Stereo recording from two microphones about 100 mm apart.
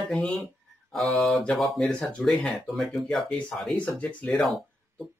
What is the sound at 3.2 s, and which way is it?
Speech, 15° left (ahead or behind).